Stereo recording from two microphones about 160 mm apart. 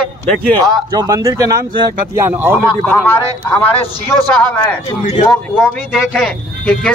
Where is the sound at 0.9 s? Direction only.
25° right (ahead or behind).